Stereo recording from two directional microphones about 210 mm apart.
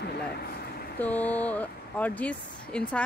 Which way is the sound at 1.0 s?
5° left (ahead or behind).